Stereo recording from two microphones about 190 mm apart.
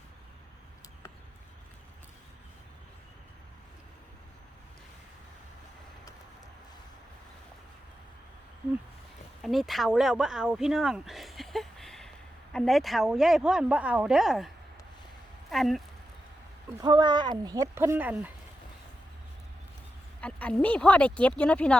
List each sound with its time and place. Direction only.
9.4 s speech: centre (ahead or behind)
16.8 s speech: 25° right (ahead or behind); by 18.3 s 10° right (ahead or behind)
20.2 s speech: 5° left (ahead or behind)